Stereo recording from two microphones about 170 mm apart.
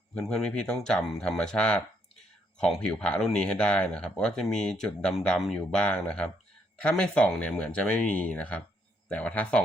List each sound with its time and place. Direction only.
0.2 s speech: 5° left (ahead or behind)